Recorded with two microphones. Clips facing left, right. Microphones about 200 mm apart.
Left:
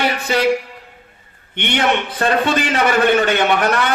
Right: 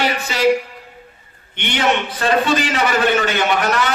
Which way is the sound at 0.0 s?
55° left (ahead or behind).